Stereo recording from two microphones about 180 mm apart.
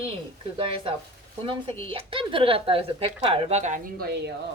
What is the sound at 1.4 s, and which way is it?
Speech, 30° right (ahead or behind).